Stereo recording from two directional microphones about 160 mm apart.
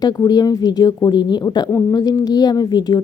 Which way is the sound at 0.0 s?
25° left (ahead or behind).